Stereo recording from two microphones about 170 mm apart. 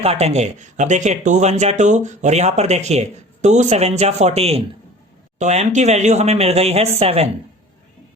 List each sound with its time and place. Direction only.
0.0 s speech: 35° right (ahead or behind)